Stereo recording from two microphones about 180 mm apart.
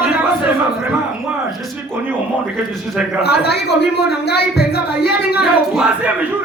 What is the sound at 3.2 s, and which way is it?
Speech, 65° left (ahead or behind).